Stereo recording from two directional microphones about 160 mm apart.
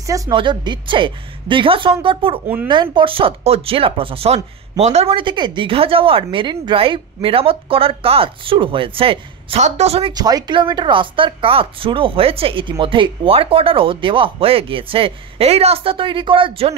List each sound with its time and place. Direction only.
0.0 s speech: 20° right (ahead or behind); by 10.1 s 40° right (ahead or behind)
10.1 s speech: 25° right (ahead or behind)